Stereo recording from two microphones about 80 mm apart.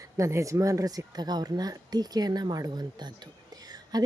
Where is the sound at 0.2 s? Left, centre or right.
Right.